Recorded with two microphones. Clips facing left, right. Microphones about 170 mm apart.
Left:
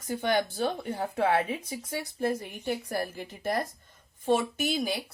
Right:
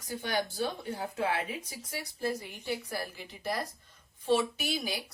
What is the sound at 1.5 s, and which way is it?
Speech, 25° left (ahead or behind).